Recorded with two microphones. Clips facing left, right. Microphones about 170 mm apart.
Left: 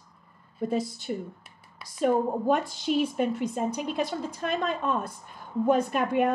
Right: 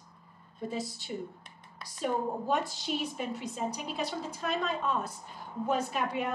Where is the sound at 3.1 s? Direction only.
60° left (ahead or behind).